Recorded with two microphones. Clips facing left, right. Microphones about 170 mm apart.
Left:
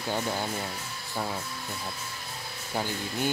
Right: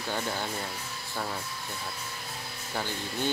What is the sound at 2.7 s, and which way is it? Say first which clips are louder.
Speech: left 2 dB; 10° left (ahead or behind).